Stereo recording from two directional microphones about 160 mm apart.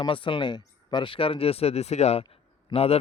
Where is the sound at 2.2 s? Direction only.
30° left (ahead or behind).